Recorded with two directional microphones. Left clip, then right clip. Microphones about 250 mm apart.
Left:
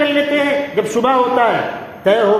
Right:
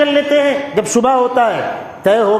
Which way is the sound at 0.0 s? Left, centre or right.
Right.